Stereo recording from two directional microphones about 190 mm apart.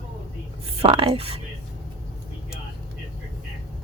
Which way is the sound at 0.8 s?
25° right (ahead or behind).